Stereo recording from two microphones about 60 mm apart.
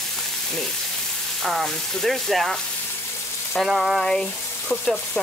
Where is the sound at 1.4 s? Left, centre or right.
Centre.